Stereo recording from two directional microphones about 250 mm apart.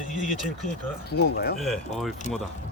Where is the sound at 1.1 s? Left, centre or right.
Left.